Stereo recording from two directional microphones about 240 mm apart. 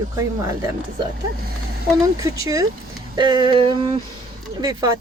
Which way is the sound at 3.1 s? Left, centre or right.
Centre.